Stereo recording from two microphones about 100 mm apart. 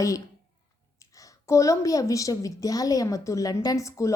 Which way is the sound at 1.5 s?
30° left (ahead or behind).